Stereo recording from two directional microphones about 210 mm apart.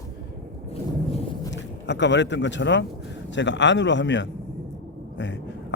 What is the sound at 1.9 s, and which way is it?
A man's voice, 55° left (ahead or behind).